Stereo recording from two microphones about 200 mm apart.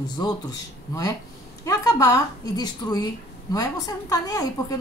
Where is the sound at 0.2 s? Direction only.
20° left (ahead or behind).